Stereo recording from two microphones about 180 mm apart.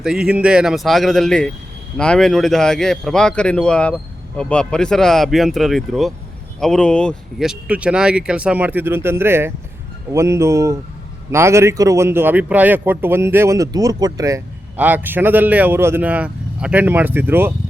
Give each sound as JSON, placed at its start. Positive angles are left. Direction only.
{"t": 0.0, "sound": "a man's voice", "side_deg": -5}